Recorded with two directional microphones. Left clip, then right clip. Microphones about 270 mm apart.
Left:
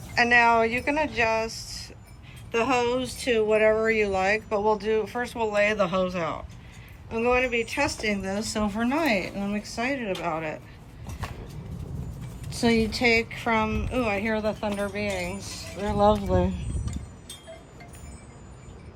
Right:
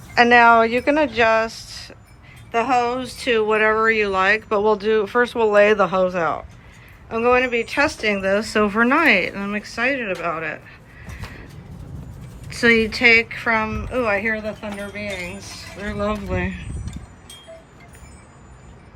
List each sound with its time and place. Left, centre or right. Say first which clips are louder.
0.1 s speech: right 7 dB; centre
12.5 s speech: right 8 dB; centre
13.7 s speech: right 2 dB; centre
13.9 s speech: right 7 dB; centre